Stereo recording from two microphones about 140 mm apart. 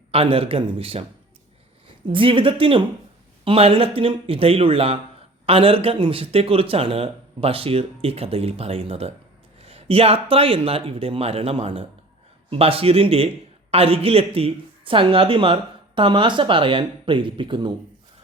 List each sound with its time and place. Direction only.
0.1 s speech: 45° right (ahead or behind)
2.0 s speech: 40° right (ahead or behind)